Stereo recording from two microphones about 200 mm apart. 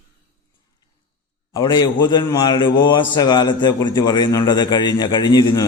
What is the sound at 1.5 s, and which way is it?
A man's voice, 20° left (ahead or behind).